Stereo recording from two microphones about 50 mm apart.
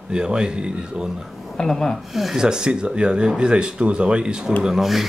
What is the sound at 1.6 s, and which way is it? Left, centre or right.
Speech, centre.